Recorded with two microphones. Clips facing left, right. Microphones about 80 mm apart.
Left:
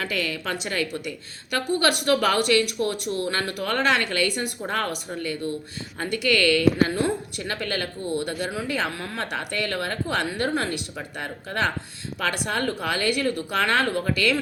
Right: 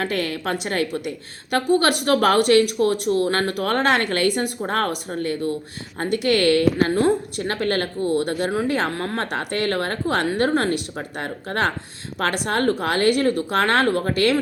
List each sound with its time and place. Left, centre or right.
0.0 s a woman's voice: right
13.8 s speech: right